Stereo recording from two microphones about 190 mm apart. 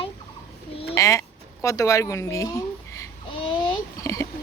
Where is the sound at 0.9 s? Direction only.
15° left (ahead or behind).